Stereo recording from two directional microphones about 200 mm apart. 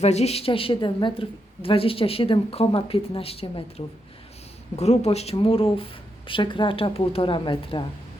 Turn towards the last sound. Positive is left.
turn(degrees=25)  # may be behind; listen again after turning